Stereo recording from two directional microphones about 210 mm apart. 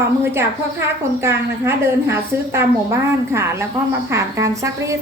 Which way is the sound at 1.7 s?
10° right (ahead or behind).